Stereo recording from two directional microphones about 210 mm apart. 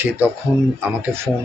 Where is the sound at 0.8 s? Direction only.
10° right (ahead or behind).